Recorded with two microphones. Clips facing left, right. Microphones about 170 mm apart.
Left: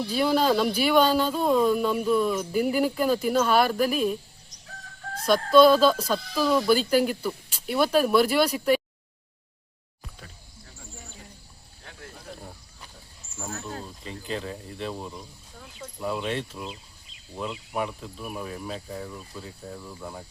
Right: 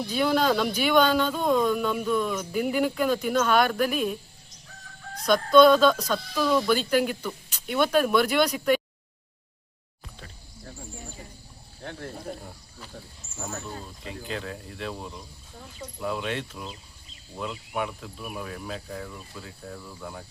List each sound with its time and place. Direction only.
0.1 s speech: 5° left (ahead or behind)
5.2 s speech: 5° left (ahead or behind)
11.8 s a sound: 55° right (ahead or behind)
13.7 s speech: centre (ahead or behind)